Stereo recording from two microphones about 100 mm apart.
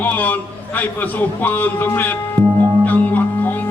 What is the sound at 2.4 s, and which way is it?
Music, 35° right (ahead or behind).